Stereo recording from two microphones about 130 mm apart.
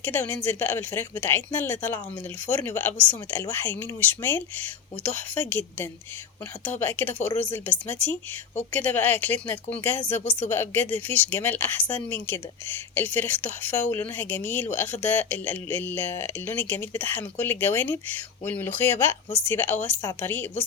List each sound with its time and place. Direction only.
0.0 s speech: 15° left (ahead or behind)